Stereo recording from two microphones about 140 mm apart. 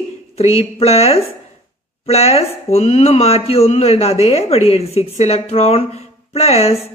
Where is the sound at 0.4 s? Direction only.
45° left (ahead or behind).